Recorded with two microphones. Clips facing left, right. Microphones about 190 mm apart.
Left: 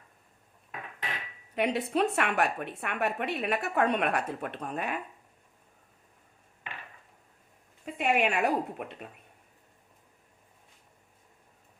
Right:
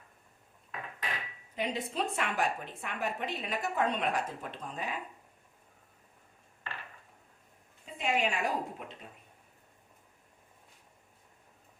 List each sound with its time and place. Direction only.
1.5 s a woman's voice: 65° left (ahead or behind)
6.7 s a sound: 15° left (ahead or behind)
7.9 s a woman's voice: 60° left (ahead or behind)